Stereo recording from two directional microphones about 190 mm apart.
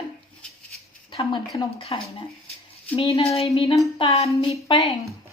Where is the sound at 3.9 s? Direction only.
30° left (ahead or behind).